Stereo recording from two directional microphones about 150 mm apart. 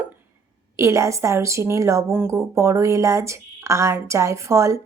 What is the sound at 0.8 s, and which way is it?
A woman's voice, 20° right (ahead or behind).